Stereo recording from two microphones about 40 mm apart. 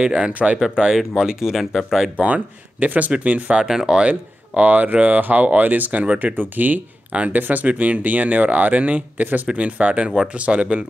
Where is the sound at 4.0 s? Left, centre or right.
Right.